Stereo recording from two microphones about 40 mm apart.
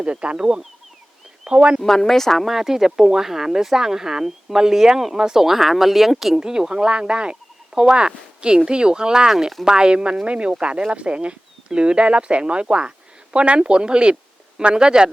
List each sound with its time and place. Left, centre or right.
0.0 s speech: right
1.8 s speech: centre
2.4 s speech: centre
6.5 s speech: centre